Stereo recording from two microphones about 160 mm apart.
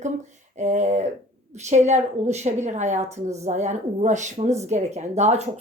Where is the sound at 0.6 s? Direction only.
45° right (ahead or behind).